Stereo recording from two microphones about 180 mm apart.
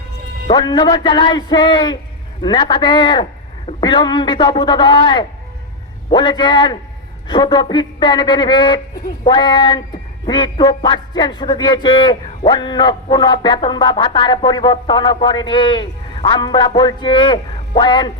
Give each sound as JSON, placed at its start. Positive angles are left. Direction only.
{"t": 0.4, "sound": "music", "side_deg": 25}